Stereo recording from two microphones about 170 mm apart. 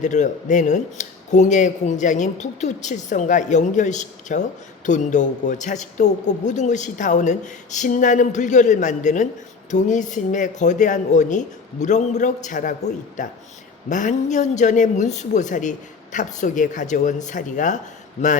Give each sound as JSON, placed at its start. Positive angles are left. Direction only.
{"t": 0.0, "sound": "speech", "side_deg": 45}